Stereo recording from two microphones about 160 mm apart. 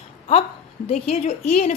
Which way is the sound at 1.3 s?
55° left (ahead or behind).